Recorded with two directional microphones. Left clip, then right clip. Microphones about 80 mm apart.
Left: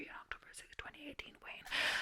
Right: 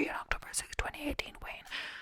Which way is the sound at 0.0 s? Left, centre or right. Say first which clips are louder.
Right 13 dB; right.